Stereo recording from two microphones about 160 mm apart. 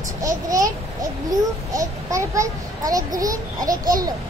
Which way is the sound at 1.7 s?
20° right (ahead or behind).